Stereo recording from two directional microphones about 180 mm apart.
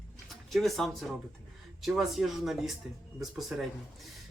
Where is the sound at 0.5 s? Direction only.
Centre (ahead or behind).